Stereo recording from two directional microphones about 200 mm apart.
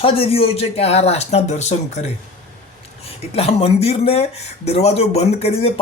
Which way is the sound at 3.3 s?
30° left (ahead or behind).